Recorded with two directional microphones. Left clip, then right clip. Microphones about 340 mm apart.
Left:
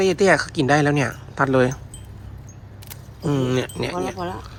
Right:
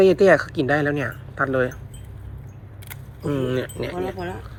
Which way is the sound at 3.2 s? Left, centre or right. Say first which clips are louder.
Left 2 dB; centre.